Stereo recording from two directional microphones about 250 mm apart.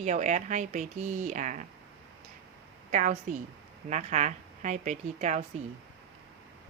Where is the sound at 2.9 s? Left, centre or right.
Right.